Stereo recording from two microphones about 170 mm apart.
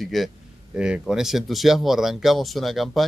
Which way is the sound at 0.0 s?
Centre (ahead or behind).